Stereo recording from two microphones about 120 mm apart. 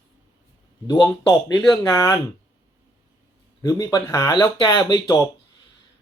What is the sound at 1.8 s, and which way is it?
Speech, 30° left (ahead or behind).